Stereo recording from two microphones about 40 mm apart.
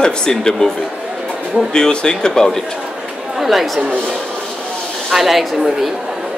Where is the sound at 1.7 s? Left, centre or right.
Centre.